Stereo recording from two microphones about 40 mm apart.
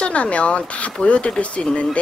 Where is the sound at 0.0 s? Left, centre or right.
Left.